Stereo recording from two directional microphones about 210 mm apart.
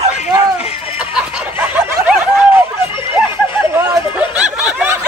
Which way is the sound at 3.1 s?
10° right (ahead or behind).